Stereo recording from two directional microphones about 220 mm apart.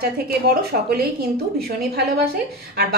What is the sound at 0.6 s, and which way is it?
A woman's voice, 45° right (ahead or behind).